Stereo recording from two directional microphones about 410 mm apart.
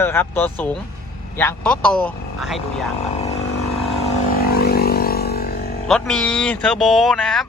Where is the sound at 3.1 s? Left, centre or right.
Centre.